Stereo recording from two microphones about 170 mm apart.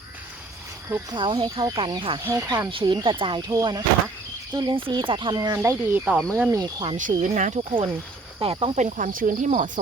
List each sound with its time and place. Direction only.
1.1 s speech: 30° right (ahead or behind)
2.2 s speech: 15° right (ahead or behind)
2.6 s speech: 30° right (ahead or behind)
5.5 s speech: 10° right (ahead or behind)
6.9 s speech: 50° right (ahead or behind)
7.6 s speech: 30° right (ahead or behind)
8.8 s speech: 45° right (ahead or behind)